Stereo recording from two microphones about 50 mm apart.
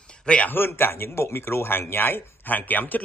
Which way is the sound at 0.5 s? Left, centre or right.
Left.